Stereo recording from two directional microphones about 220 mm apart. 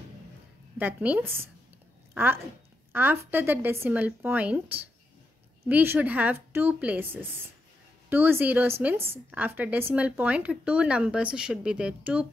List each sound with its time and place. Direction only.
0.7 s speech: 5° right (ahead or behind)